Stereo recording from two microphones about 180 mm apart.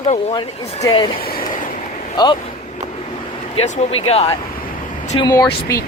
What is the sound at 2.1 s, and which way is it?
Speech, 25° left (ahead or behind).